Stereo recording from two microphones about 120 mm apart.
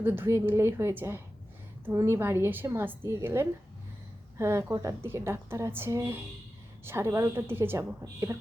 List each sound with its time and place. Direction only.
0.0 s a woman's voice: 20° right (ahead or behind)